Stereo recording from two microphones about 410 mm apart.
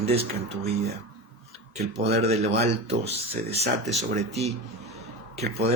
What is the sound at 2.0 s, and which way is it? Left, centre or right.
Speech, centre.